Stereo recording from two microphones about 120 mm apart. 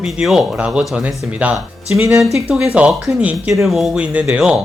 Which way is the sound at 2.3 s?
5° right (ahead or behind).